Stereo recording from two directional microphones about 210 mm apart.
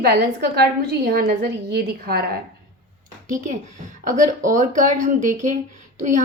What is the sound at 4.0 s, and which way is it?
Speech, 40° right (ahead or behind).